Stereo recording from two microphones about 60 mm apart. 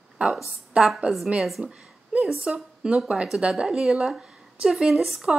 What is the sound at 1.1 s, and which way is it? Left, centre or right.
Speech, right.